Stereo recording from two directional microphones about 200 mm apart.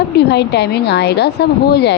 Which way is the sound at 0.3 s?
55° left (ahead or behind).